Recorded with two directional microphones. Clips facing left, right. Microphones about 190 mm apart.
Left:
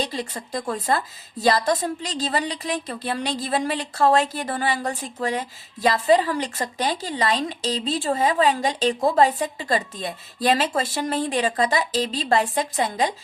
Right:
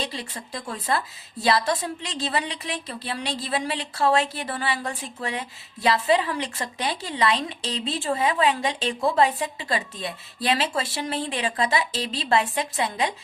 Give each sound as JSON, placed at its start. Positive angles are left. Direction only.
{"t": 0.0, "sound": "a woman's voice", "side_deg": 40}